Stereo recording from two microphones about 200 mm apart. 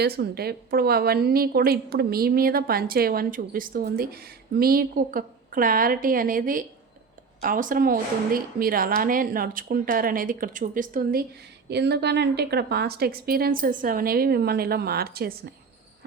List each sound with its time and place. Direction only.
0.0 s a woman's voice: 55° right (ahead or behind)
11.7 s a woman's voice: 55° right (ahead or behind)